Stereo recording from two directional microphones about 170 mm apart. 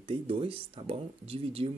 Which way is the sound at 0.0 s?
30° right (ahead or behind).